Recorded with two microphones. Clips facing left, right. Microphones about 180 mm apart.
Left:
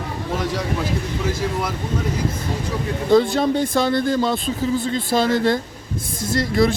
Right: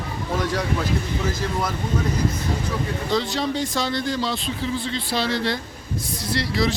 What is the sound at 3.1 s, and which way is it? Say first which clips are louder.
Speech: left 8 dB; 50° left (ahead or behind).